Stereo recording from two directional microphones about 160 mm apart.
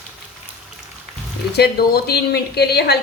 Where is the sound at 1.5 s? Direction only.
85° left.